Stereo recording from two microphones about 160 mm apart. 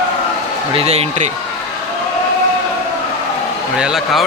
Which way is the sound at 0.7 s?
40° right (ahead or behind).